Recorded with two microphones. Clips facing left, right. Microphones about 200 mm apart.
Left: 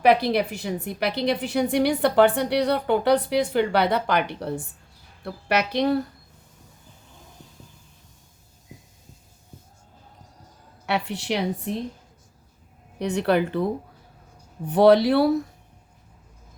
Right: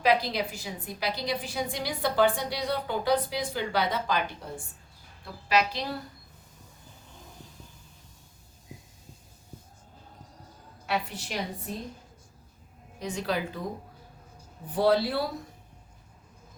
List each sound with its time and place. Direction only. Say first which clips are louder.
0.0 s a woman's voice: left 6 dB; 60° left (ahead or behind)
10.8 s speech: left 6 dB; 70° left (ahead or behind)
13.0 s speech: left 9 dB; 65° left (ahead or behind)
14.7 s speech: left 8 dB; 70° left (ahead or behind)